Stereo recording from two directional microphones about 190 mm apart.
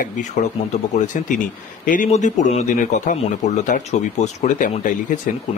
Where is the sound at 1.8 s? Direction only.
45° left (ahead or behind).